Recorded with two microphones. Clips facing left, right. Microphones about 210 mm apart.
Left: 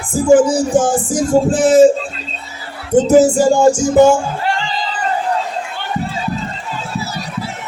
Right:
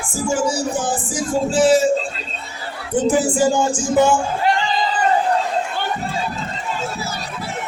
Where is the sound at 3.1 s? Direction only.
40° left (ahead or behind).